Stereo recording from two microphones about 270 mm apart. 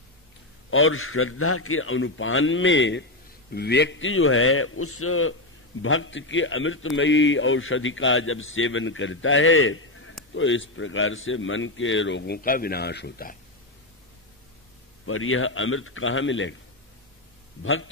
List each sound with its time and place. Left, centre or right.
0.7 s a man's voice: left
15.0 s a man's voice: left